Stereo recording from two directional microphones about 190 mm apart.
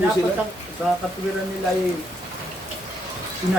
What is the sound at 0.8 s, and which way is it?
Speech, 5° right (ahead or behind).